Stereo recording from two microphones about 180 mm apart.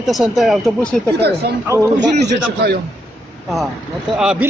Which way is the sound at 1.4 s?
65° right (ahead or behind).